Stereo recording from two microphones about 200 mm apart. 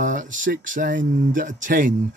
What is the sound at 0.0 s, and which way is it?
Speech, 40° right (ahead or behind).